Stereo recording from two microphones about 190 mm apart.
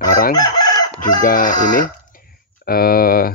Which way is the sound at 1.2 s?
45° left (ahead or behind).